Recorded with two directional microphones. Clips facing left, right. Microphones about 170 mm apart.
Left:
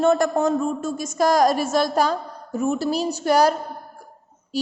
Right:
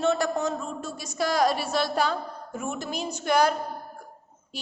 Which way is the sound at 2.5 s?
35° left (ahead or behind).